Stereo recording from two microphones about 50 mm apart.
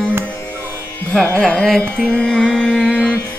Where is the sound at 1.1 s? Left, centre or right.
Centre.